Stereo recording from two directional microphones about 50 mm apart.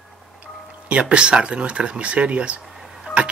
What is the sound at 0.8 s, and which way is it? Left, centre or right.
Speech, right.